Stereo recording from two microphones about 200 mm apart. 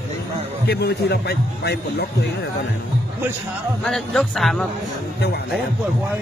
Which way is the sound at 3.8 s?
Centre (ahead or behind).